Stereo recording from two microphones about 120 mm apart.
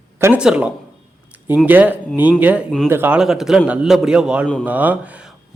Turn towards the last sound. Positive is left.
turn(degrees=-15)  # may be behind; listen again after turning